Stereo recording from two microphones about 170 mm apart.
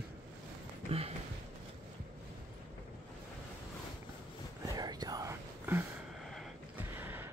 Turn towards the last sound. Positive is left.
turn(degrees=-10)  # may be behind; listen again after turning